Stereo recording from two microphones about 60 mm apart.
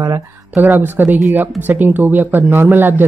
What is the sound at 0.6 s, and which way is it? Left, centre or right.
Speech, right.